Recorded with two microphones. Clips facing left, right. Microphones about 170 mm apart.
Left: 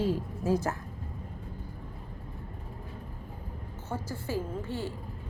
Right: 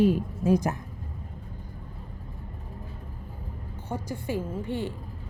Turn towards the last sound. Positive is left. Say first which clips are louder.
# right 3 dB
turn(degrees=-20)  # may be behind; listen again after turning